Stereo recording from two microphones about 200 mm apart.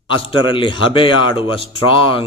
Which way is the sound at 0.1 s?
25° left (ahead or behind).